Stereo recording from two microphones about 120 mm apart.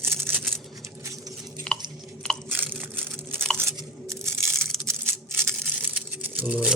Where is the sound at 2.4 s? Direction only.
15° right (ahead or behind).